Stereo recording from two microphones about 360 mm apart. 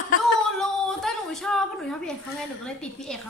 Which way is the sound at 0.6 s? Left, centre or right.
Centre.